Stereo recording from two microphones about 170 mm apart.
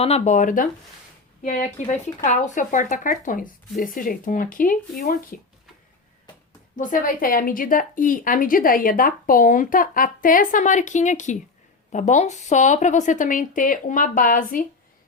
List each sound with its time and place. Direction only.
0.0 s a woman's voice: 40° left (ahead or behind)
6.7 s a woman's voice: 50° left (ahead or behind)